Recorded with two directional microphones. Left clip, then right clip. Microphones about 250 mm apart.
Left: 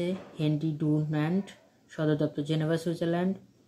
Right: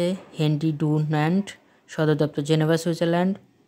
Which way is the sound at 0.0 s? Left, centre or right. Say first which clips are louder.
Right 7 dB; right.